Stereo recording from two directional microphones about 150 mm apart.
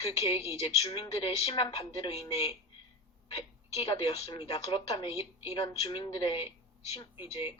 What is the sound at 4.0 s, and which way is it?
Speech, 40° left (ahead or behind).